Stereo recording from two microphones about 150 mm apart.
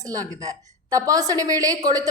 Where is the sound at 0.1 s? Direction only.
25° right (ahead or behind).